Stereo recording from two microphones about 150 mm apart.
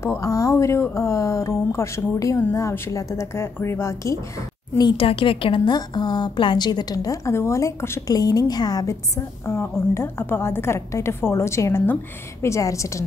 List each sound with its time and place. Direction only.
0.0 s a woman's voice: 20° left (ahead or behind)
4.7 s a woman's voice: 35° left (ahead or behind)